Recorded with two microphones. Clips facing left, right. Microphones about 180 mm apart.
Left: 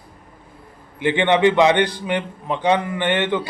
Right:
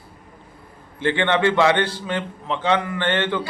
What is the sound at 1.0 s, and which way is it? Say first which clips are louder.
A man's voice: left 3 dB; 15° left (ahead or behind).